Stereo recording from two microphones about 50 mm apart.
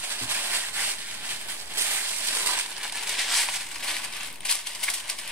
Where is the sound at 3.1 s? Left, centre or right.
Centre.